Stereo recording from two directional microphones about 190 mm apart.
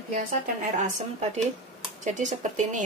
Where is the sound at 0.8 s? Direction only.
40° right (ahead or behind).